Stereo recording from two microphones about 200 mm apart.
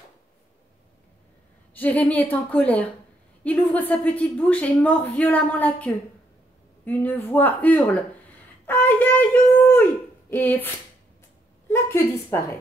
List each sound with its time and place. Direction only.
1.7 s a woman's voice: 10° left (ahead or behind)
11.7 s a woman's voice: 10° left (ahead or behind)